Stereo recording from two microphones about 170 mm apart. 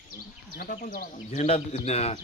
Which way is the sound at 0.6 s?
55° left (ahead or behind).